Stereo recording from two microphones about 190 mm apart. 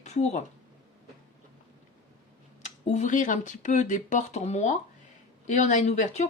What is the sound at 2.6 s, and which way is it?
Speech, 40° left (ahead or behind).